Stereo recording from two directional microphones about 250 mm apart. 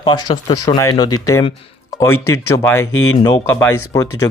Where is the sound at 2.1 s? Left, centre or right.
Left.